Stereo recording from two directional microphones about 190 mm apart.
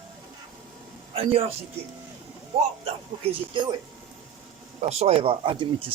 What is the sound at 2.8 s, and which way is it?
Speech, 30° right (ahead or behind).